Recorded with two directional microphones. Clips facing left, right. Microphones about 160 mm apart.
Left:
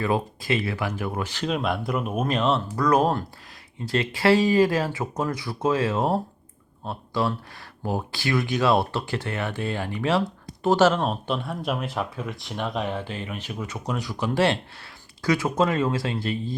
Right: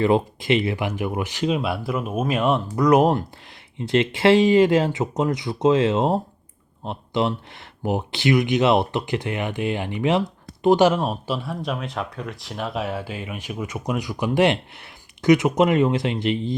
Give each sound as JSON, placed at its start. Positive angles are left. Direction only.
{"t": 0.0, "sound": "speech", "side_deg": -20}